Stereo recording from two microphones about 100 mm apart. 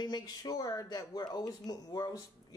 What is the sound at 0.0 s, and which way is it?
Speech, 45° left (ahead or behind).